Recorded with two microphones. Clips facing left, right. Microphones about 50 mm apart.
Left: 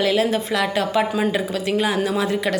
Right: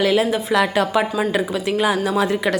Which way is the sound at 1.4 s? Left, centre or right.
Centre.